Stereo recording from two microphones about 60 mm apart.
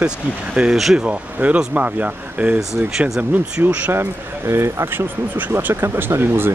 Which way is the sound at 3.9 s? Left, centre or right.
Right.